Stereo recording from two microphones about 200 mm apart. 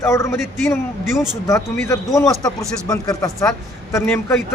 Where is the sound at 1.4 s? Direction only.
15° left (ahead or behind).